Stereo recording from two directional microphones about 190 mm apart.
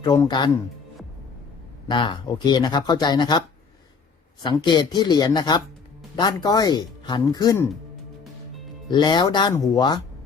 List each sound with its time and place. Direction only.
0.0 s speech: 20° left (ahead or behind)
1.9 s speech: 25° left (ahead or behind)
4.4 s speech: 25° left (ahead or behind)
8.9 s speech: 25° left (ahead or behind)